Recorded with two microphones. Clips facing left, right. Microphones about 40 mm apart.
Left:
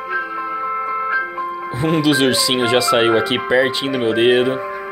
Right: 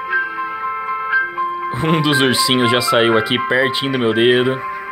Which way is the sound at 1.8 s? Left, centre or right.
Right.